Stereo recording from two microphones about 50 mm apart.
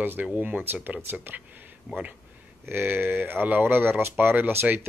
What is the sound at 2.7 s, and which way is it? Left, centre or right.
Speech, right.